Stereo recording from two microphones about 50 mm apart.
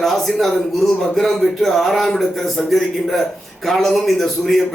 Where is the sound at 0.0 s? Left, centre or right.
Centre.